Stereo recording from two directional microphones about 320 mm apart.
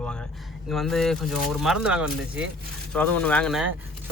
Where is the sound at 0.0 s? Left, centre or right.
Centre.